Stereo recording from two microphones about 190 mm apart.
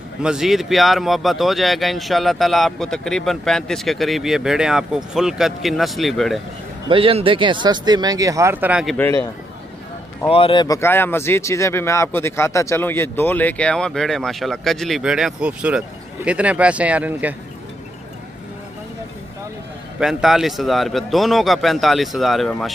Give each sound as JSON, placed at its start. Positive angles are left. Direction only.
{"t": 0.2, "sound": "speech", "side_deg": -5}
{"t": 6.9, "sound": "speech", "side_deg": -30}
{"t": 8.9, "sound": "speech", "side_deg": 10}
{"t": 10.3, "sound": "speech", "side_deg": 25}
{"t": 20.0, "sound": "speech", "side_deg": 0}